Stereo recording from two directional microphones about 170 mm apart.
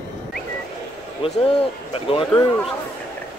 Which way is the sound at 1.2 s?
35° left (ahead or behind).